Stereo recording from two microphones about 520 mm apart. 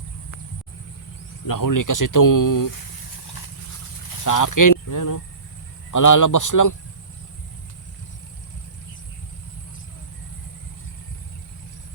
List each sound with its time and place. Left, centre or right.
1.5 s speech: left
4.1 s a sound: left
5.9 s speech: left